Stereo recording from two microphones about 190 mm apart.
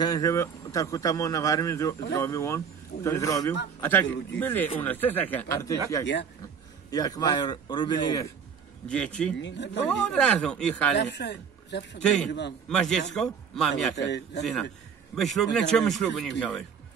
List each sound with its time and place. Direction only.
0.0 s speech: 20° left (ahead or behind)
6.9 s a man's voice: 20° left (ahead or behind)
8.8 s speech: 5° left (ahead or behind)
9.4 s speech: 65° left (ahead or behind)
9.8 s speech: 5° left (ahead or behind)
11.0 s a man's voice: 65° left (ahead or behind)
12.0 s speech: 5° left (ahead or behind)
12.3 s a man's voice: 65° left (ahead or behind)
12.6 s speech: 5° left (ahead or behind)
13.9 s a man's voice: 65° left (ahead or behind)
15.1 s speech: centre (ahead or behind)